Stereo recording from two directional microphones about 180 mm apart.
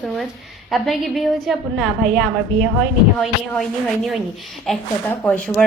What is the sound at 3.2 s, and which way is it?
A woman's voice, centre (ahead or behind).